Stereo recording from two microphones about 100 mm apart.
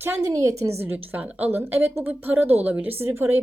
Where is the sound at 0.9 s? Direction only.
15° right (ahead or behind).